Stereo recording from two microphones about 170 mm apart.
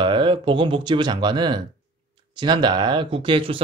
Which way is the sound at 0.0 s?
30° right (ahead or behind).